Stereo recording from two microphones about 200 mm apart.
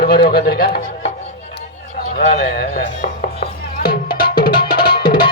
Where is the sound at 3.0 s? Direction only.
50° left (ahead or behind).